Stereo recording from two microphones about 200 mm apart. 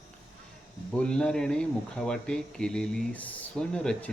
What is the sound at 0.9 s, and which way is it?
Speech, 5° left (ahead or behind).